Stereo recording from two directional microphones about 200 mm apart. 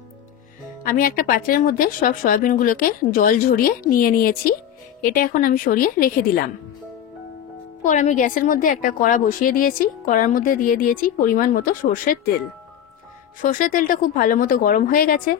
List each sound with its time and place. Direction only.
0.8 s a woman's voice: 45° left (ahead or behind)
7.8 s a woman's voice: 35° left (ahead or behind)
13.4 s a woman's voice: 40° left (ahead or behind)